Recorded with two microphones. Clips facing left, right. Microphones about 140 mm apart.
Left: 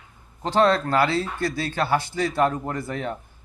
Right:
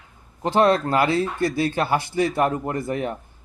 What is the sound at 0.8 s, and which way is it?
Speech, 15° right (ahead or behind).